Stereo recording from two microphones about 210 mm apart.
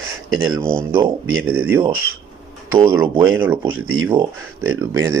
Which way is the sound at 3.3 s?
10° right (ahead or behind).